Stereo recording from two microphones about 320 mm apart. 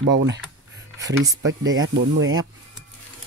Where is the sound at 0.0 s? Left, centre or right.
Right.